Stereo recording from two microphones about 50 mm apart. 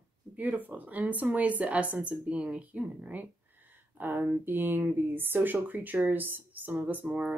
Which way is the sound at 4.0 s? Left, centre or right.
Right.